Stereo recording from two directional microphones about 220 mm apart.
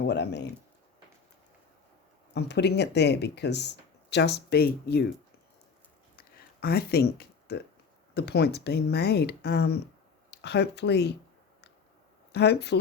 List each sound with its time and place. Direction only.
0.0 s speech: 50° left (ahead or behind)
2.3 s speech: 50° left (ahead or behind)
6.1 s a sound: 45° left (ahead or behind)
8.1 s speech: 50° left (ahead or behind)
12.3 s speech: 50° left (ahead or behind)